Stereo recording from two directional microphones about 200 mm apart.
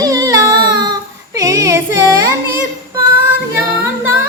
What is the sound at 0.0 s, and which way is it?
Child singing, 15° right (ahead or behind).